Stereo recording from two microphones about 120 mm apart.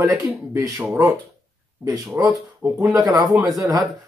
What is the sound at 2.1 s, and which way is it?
Speech, 15° right (ahead or behind).